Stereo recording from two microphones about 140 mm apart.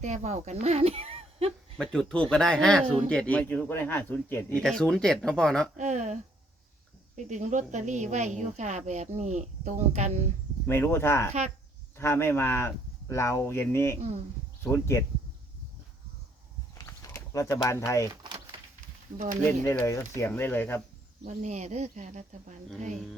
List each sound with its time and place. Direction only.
0.0 s speech: 55° right (ahead or behind)
1.8 s speech: 5° left (ahead or behind)
4.6 s speech: 5° left (ahead or behind)
5.7 s a woman's voice: 55° right (ahead or behind)
7.2 s a woman's voice: 60° right (ahead or behind)
10.7 s speech: 15° left (ahead or behind)
16.7 s a sound: 20° left (ahead or behind)
18.1 s a sound: 30° right (ahead or behind)
19.5 s speech: 15° left (ahead or behind)
21.2 s a woman's voice: 55° right (ahead or behind)